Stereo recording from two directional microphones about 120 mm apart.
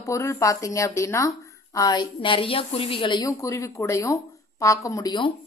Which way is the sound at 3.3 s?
25° left (ahead or behind).